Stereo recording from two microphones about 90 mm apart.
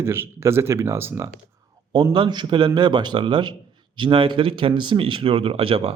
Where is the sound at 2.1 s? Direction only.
55° right (ahead or behind).